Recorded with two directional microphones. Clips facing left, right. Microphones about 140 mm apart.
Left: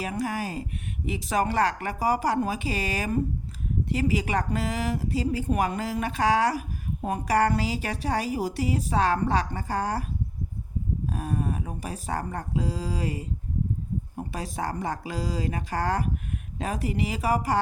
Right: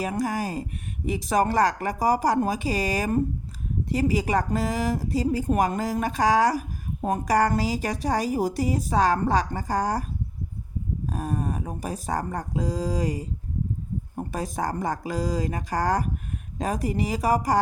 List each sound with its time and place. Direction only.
0.0 s a woman's voice: 40° right (ahead or behind)
11.1 s a woman's voice: 40° right (ahead or behind)
14.3 s a woman's voice: 45° right (ahead or behind)